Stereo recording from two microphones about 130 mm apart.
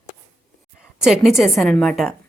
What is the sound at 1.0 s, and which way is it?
A woman's voice, centre (ahead or behind).